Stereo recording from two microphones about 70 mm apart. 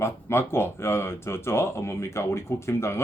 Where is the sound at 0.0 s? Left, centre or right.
Left.